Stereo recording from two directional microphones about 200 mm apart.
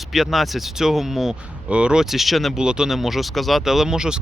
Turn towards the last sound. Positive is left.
turn(degrees=-5)  # may be behind; listen again after turning